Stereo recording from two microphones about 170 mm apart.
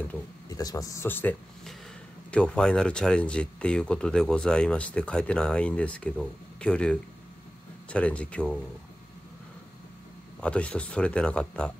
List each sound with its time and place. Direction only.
0.5 s speech: 20° left (ahead or behind)
2.3 s speech: 5° left (ahead or behind)
10.4 s speech: 5° left (ahead or behind)